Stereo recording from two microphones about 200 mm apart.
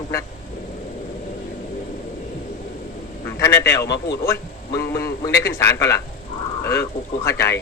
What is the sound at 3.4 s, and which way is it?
Speech, 15° left (ahead or behind).